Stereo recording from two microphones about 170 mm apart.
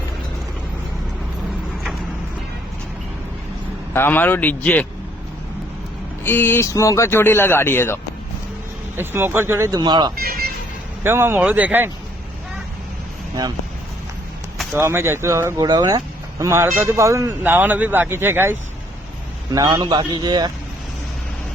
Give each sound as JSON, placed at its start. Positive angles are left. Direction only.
{"t": 3.9, "sound": "a man's voice", "side_deg": 10}
{"t": 6.2, "sound": "a man's voice", "side_deg": 10}
{"t": 9.0, "sound": "speech", "side_deg": -10}
{"t": 9.8, "sound": "a man's voice", "side_deg": -25}
{"t": 10.2, "sound": "music", "side_deg": -65}
{"t": 11.0, "sound": "speech", "side_deg": -15}
{"t": 14.7, "sound": "a man's voice", "side_deg": -15}